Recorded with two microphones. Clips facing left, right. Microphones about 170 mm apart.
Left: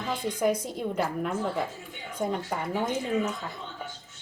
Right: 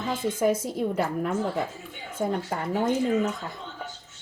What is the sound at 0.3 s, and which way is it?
Speech, 5° right (ahead or behind).